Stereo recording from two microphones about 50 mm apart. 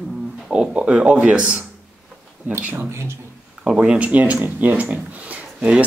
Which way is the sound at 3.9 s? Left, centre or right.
Right.